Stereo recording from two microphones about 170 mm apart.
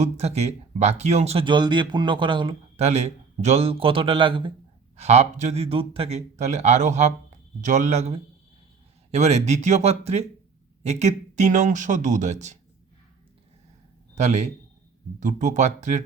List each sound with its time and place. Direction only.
0.0 s speech: 40° right (ahead or behind)
14.2 s speech: 40° right (ahead or behind)